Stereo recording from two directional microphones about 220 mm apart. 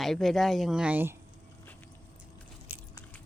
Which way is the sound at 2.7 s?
10° right (ahead or behind).